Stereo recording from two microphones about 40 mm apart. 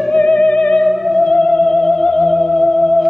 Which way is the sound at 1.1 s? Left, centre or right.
Left.